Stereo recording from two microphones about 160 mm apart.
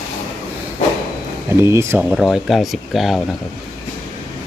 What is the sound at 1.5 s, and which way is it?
Speech, 15° right (ahead or behind).